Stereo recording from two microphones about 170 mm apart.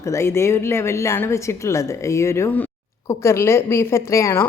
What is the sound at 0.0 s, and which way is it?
A woman's voice, 15° left (ahead or behind).